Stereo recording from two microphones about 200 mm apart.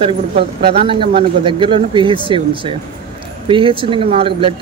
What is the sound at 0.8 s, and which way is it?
Speech, 25° right (ahead or behind).